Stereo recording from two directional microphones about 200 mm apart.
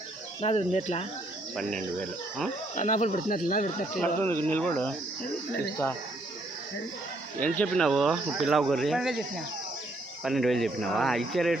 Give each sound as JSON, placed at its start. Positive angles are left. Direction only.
{"t": 0.4, "sound": "speech", "side_deg": 30}
{"t": 1.5, "sound": "speech", "side_deg": 0}
{"t": 2.7, "sound": "speech", "side_deg": 35}
{"t": 3.9, "sound": "speech", "side_deg": 5}
{"t": 7.3, "sound": "speech", "side_deg": 10}
{"t": 10.2, "sound": "speech", "side_deg": 0}